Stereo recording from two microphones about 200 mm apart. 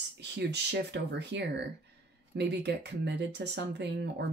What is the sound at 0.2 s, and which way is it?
Speech, 55° right (ahead or behind).